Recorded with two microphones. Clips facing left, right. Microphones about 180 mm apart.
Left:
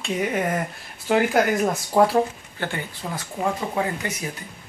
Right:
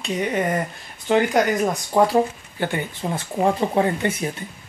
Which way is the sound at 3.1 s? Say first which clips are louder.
Right 5 dB; 30° right (ahead or behind).